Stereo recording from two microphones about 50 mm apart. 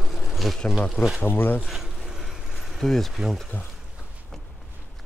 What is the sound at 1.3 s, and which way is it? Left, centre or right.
Speech, left.